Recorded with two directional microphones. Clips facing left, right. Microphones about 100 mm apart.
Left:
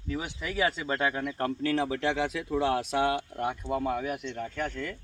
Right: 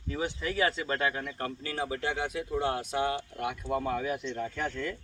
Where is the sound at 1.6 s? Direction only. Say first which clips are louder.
Left 6 dB; 90° left.